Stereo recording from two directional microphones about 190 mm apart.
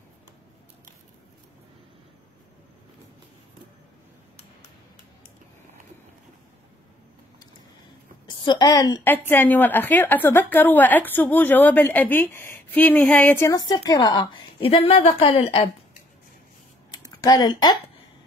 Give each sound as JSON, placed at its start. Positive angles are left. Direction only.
{"t": 8.3, "sound": "a woman's voice", "side_deg": 25}
{"t": 16.9, "sound": "typing", "side_deg": 20}